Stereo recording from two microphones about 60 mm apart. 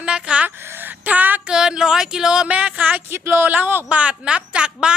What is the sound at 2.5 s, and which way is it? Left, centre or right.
Speech, right.